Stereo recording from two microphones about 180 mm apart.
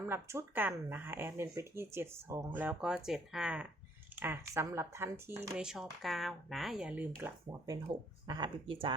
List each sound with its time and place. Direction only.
0.1 s speech: 15° right (ahead or behind)
5.6 s speech: centre (ahead or behind)
7.2 s speech: 20° right (ahead or behind)